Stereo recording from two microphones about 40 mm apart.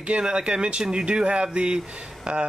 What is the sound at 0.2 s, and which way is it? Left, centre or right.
Speech, right.